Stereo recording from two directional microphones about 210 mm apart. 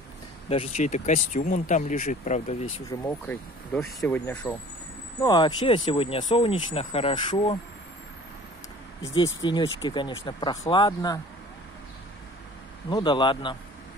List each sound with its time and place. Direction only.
0.5 s speech: 30° left (ahead or behind)
2.9 s speech: 10° left (ahead or behind)
5.2 s speech: 20° left (ahead or behind)
9.2 s speech: 65° left (ahead or behind)
9.8 s speech: 20° left (ahead or behind)
12.9 s speech: 20° left (ahead or behind)